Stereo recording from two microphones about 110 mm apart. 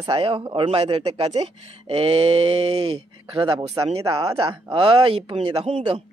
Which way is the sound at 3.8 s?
45° right (ahead or behind).